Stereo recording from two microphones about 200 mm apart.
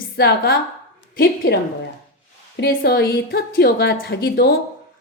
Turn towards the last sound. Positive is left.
turn(degrees=50)  # may be behind; listen again after turning